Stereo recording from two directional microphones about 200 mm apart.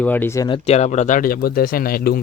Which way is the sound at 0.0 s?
10° left (ahead or behind).